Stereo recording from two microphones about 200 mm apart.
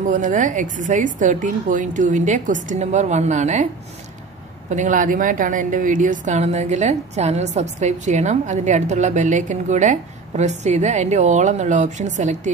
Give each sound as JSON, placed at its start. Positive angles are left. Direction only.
{"t": 0.0, "sound": "a woman's voice", "side_deg": -40}
{"t": 4.6, "sound": "a woman's voice", "side_deg": -40}